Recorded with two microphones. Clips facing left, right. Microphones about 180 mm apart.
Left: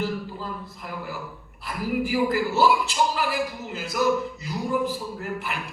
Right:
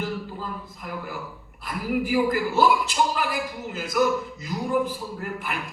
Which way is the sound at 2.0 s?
50° right (ahead or behind).